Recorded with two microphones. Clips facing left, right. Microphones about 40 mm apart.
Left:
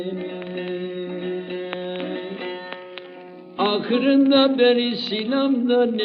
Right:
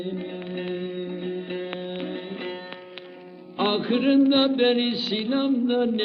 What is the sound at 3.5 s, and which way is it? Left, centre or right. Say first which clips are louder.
Music: left 3 dB; centre.